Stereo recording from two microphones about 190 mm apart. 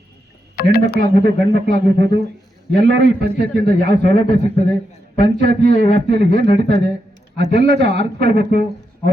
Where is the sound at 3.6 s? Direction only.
40° left (ahead or behind).